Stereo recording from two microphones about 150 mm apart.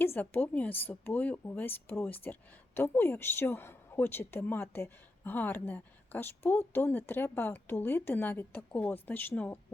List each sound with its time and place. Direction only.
0.0 s a woman's voice: 15° left (ahead or behind)